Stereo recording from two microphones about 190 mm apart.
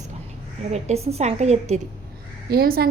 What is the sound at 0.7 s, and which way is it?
A woman's voice, 35° right (ahead or behind).